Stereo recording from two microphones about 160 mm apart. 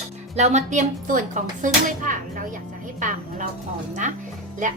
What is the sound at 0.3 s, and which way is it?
A woman's voice, 45° right (ahead or behind).